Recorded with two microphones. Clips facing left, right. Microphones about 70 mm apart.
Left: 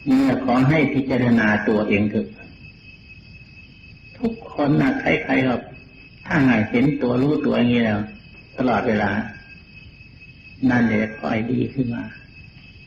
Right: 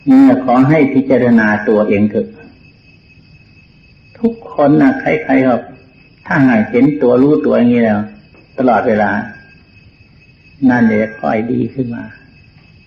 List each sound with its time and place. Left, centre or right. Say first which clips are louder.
0.1 s a man's voice: right 11 dB; right
0.3 s speech: right 8 dB; centre
0.9 s speech: right 10 dB; right
1.3 s speech: right 7 dB; centre
4.2 s a sound: right 10 dB; centre
4.9 s speech: right 8 dB; centre
10.6 s speech: right 8 dB; centre